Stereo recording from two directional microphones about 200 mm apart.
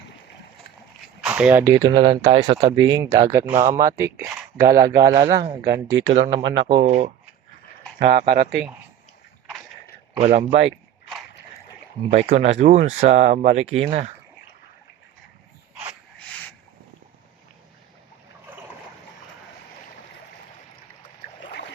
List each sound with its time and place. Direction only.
1.2 s speech: 5° right (ahead or behind)
5.6 s speech: 55° right (ahead or behind)
6.3 s speech: 25° right (ahead or behind)
8.1 s speech: 45° right (ahead or behind)
10.2 s speech: 30° right (ahead or behind)
12.1 s speech: 35° right (ahead or behind)
16.1 s a sound: 5° left (ahead or behind)